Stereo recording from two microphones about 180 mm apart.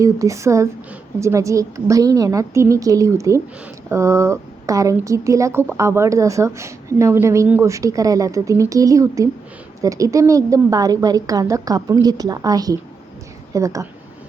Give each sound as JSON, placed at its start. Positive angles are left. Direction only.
{"t": 0.0, "sound": "a woman's voice", "side_deg": -15}